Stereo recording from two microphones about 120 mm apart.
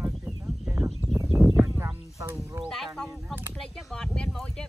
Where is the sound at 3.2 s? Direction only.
15° right (ahead or behind).